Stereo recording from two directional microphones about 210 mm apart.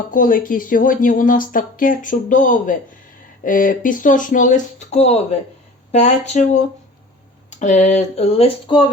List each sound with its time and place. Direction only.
0.1 s speech: 40° left (ahead or behind); by 8.9 s 25° left (ahead or behind)